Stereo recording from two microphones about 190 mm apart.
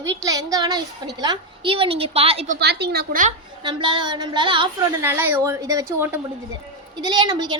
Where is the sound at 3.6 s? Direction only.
25° right (ahead or behind).